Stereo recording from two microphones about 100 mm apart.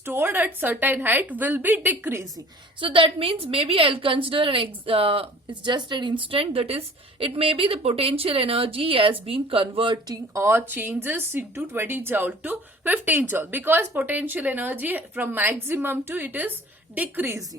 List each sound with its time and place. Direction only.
0.0 s speech: 25° right (ahead or behind)
2.8 s a woman's voice: 65° right (ahead or behind)
5.6 s a woman's voice: 50° right (ahead or behind)
10.3 s speech: 25° right (ahead or behind)